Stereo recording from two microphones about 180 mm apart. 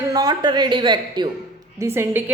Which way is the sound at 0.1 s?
20° right (ahead or behind).